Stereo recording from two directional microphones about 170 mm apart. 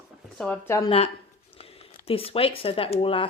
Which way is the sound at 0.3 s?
5° left (ahead or behind).